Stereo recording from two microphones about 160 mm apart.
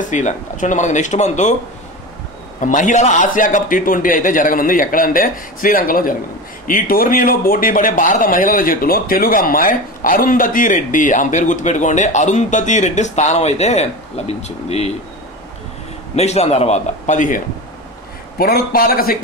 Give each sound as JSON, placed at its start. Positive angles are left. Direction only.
{"t": 0.1, "sound": "speech", "side_deg": 50}
{"t": 2.6, "sound": "a man's voice", "side_deg": 50}
{"t": 16.2, "sound": "speech", "side_deg": 40}
{"t": 18.4, "sound": "a man's voice", "side_deg": 70}